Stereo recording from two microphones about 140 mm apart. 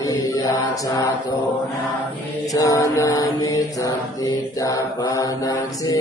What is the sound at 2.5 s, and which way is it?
Mantra, 25° left (ahead or behind).